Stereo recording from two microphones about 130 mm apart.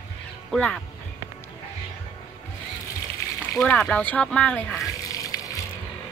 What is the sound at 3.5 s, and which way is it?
Speech, 5° left (ahead or behind).